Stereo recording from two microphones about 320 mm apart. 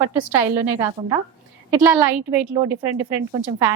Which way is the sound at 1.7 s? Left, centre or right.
Centre.